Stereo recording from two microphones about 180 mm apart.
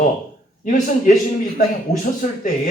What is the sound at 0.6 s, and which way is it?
Speech, 45° left (ahead or behind).